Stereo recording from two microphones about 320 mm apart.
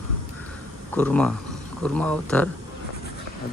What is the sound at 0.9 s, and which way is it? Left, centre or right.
Speech, centre.